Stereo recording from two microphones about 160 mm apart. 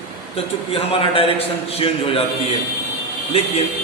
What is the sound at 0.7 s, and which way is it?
A man's voice, 35° left (ahead or behind).